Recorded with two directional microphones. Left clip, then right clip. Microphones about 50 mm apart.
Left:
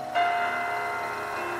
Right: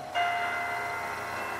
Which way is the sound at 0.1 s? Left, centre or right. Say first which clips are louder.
Left 3 dB; left.